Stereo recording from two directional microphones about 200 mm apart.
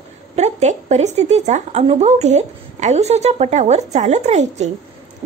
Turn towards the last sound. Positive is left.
turn(degrees=-35)  # may be behind; listen again after turning